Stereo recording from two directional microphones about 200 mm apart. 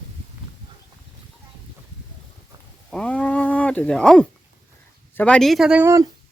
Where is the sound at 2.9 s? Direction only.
5° left (ahead or behind).